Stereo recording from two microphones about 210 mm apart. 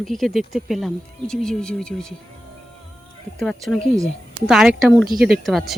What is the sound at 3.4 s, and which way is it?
Speech, centre (ahead or behind).